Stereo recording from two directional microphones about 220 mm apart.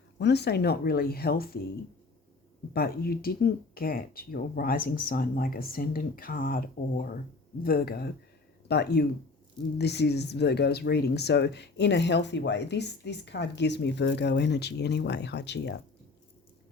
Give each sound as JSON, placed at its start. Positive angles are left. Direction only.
{"t": 0.2, "sound": "speech", "side_deg": 50}
{"t": 2.7, "sound": "speech", "side_deg": 45}